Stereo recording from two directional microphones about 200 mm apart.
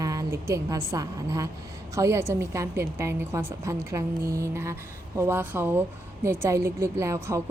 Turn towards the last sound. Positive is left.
turn(degrees=-15)  # may be behind; listen again after turning